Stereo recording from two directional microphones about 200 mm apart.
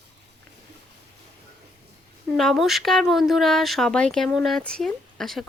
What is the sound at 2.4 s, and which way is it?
A woman's voice, centre (ahead or behind).